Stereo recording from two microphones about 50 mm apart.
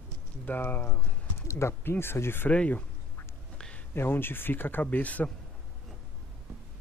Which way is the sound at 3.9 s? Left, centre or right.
Left.